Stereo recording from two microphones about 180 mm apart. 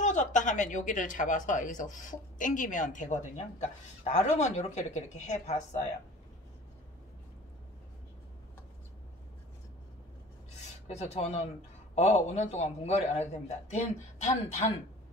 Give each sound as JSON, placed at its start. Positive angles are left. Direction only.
{"t": 0.0, "sound": "speech", "side_deg": 40}
{"t": 10.9, "sound": "a man's voice", "side_deg": 40}